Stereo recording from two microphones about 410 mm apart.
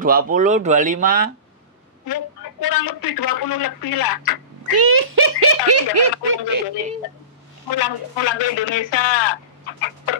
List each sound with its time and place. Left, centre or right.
0.0 s speech: centre
2.0 s a woman's voice: left
4.6 s speech: right
7.7 s a man's voice: left